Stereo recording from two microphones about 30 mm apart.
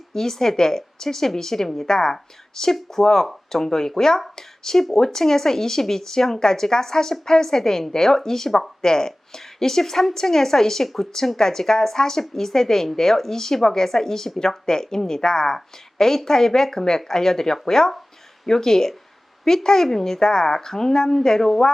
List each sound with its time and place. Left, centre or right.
0.1 s a woman's voice: centre